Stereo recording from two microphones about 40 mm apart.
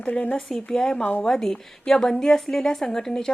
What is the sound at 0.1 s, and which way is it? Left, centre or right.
Speech, left.